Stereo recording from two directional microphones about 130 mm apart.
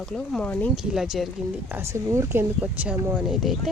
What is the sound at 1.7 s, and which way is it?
Speech, 20° right (ahead or behind).